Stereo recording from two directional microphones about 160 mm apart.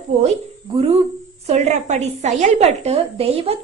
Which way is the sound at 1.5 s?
45° right (ahead or behind).